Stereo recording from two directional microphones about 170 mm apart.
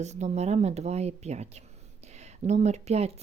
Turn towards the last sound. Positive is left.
turn(degrees=-40)  # may be behind; listen again after turning